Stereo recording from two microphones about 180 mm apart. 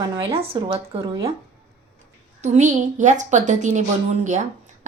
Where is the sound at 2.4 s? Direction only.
40° right (ahead or behind).